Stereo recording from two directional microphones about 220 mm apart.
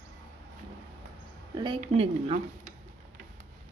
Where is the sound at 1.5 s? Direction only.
20° right (ahead or behind).